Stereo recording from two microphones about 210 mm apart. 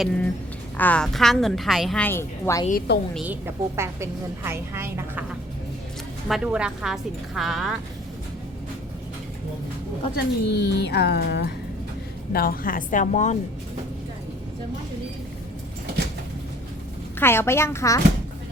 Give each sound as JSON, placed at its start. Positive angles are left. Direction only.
{"t": 0.8, "sound": "a woman's voice", "side_deg": 5}
{"t": 2.9, "sound": "a woman's voice", "side_deg": 55}
{"t": 3.2, "sound": "a woman's voice", "side_deg": -10}
{"t": 10.2, "sound": "a woman's voice", "side_deg": 50}
{"t": 17.2, "sound": "speech", "side_deg": 10}